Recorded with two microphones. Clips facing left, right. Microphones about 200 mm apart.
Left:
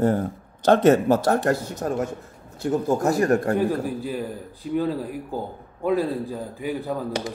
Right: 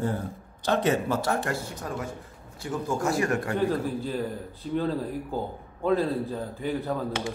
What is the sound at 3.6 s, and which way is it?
A man's voice, 10° left (ahead or behind).